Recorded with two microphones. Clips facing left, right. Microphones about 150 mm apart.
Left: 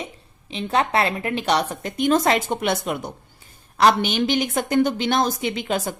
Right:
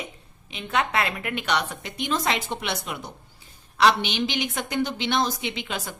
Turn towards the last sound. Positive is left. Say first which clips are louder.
# left 7 dB
turn(degrees=45)  # may be behind; listen again after turning